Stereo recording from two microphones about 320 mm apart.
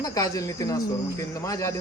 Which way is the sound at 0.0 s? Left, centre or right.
Centre.